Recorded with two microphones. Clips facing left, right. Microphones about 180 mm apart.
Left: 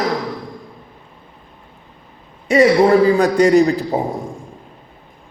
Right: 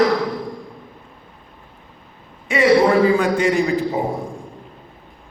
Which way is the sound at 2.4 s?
40° left (ahead or behind).